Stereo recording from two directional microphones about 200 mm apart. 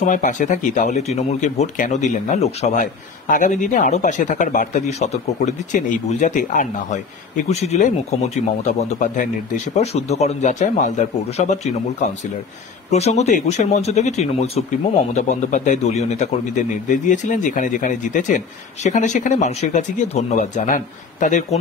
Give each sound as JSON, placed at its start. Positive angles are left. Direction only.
{"t": 0.0, "sound": "speech", "side_deg": 40}
{"t": 12.9, "sound": "speech", "side_deg": 35}